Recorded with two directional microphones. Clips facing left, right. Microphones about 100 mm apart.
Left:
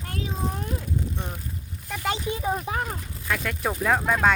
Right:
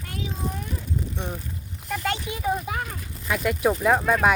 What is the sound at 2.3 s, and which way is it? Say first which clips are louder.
Speech: even; 30° left (ahead or behind).